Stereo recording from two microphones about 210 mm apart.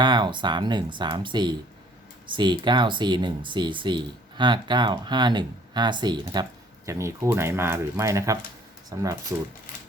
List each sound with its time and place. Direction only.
0.0 s speech: 20° right (ahead or behind)